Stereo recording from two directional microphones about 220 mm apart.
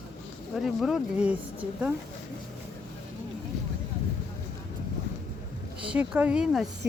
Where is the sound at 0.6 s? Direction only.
Centre (ahead or behind).